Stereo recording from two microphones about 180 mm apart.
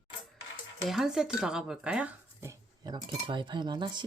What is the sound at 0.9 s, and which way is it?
Speech, centre (ahead or behind).